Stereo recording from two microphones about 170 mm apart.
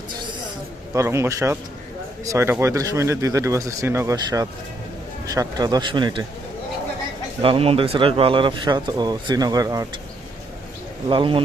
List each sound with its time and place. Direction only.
0.9 s speech: 15° right (ahead or behind)
7.4 s speech: 35° right (ahead or behind)
11.1 s a man's voice: 30° right (ahead or behind)